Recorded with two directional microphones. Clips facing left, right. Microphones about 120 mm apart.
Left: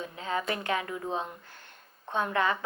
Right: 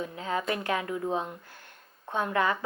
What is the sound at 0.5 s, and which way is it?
Speech, 20° left (ahead or behind).